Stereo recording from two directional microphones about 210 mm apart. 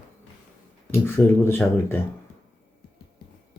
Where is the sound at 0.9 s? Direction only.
10° left (ahead or behind).